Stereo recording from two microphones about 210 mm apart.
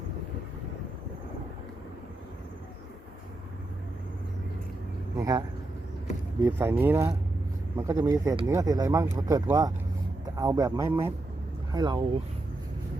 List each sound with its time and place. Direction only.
5.1 s speech: 15° right (ahead or behind)
6.4 s speech: 10° right (ahead or behind)